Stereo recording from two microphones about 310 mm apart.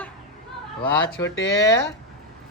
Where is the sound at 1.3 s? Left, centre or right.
Left.